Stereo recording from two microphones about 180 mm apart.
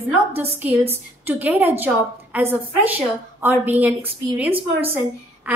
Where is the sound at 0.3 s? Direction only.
10° right (ahead or behind).